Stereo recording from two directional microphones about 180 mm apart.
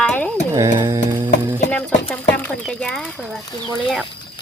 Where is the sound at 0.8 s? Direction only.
15° right (ahead or behind).